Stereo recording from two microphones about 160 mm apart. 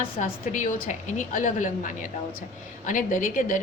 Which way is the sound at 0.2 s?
50° left (ahead or behind).